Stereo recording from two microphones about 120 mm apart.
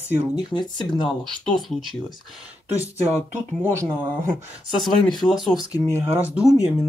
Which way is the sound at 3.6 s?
25° right (ahead or behind).